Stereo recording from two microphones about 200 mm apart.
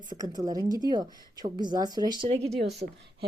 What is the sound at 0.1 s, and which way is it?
Speech, 20° right (ahead or behind).